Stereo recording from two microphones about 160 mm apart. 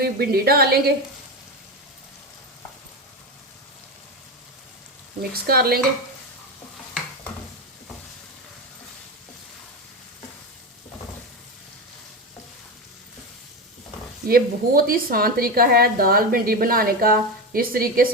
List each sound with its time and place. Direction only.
0.0 s a woman's voice: 75° right (ahead or behind)
5.3 s a woman's voice: 70° right (ahead or behind)
14.3 s a woman's voice: 65° right (ahead or behind)